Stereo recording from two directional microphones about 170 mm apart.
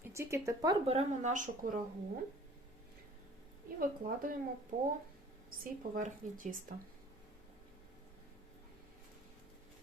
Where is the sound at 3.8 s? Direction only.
55° right (ahead or behind).